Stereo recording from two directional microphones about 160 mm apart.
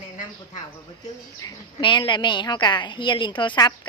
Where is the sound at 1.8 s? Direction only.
30° left (ahead or behind).